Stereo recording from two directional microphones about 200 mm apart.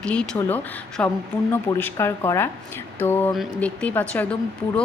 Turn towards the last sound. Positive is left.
turn(degrees=5)  # may be behind; listen again after turning